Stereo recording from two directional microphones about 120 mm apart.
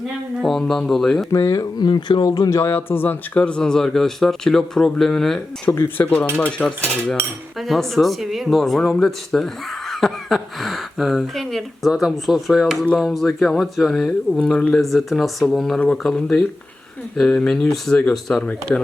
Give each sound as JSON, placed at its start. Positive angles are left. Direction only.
{"t": 0.4, "sound": "speech", "side_deg": 5}
{"t": 1.3, "sound": "speech", "side_deg": 25}
{"t": 5.6, "sound": "speech", "side_deg": 20}